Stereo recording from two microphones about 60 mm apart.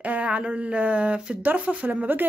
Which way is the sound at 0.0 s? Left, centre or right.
Right.